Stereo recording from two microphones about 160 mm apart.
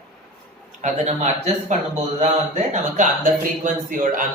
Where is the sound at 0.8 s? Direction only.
45° right (ahead or behind).